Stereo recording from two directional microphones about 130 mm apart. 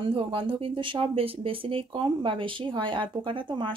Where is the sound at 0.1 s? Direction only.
45° right (ahead or behind).